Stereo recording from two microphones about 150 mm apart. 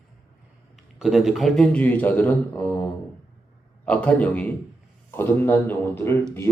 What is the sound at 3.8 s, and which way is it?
Speech, 10° left (ahead or behind).